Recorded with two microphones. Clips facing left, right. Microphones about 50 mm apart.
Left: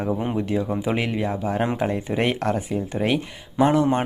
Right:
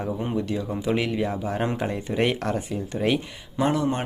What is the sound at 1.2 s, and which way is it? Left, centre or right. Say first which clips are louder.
Speech: left 2 dB; centre.